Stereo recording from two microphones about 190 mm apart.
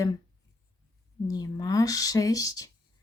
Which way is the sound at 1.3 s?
20° left (ahead or behind).